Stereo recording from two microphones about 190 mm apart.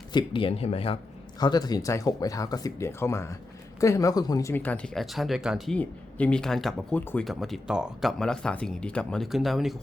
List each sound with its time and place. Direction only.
0.1 s speech: 25° left (ahead or behind); by 9.7 s centre (ahead or behind)